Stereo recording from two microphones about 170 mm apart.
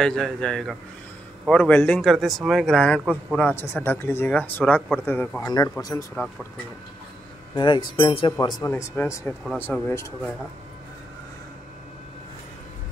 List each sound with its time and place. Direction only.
0.0 s speech: 5° left (ahead or behind)
5.5 s a man's voice: 25° left (ahead or behind)
6.1 s speech: centre (ahead or behind)
7.5 s a man's voice: 25° left (ahead or behind); by 10.3 s 10° left (ahead or behind)